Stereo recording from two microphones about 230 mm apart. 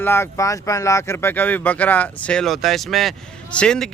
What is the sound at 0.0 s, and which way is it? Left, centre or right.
Speech, centre.